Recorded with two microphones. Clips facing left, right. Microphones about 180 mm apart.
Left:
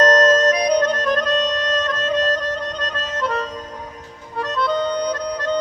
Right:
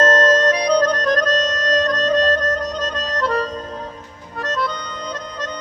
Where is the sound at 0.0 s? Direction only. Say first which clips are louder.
Left 1 dB; 30° right (ahead or behind).